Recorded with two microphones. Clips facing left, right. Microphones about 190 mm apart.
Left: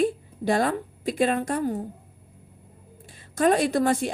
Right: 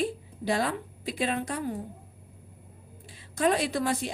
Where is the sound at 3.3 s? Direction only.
45° left (ahead or behind).